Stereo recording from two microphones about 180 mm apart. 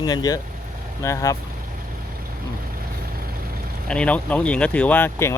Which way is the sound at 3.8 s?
5° left (ahead or behind).